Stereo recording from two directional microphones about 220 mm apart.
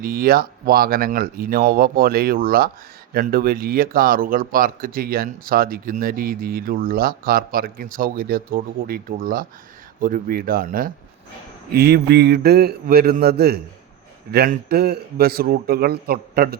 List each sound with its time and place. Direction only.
0.0 s speech: 40° right (ahead or behind)